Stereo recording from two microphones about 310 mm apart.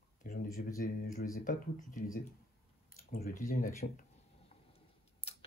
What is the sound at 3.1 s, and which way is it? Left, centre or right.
Speech, left.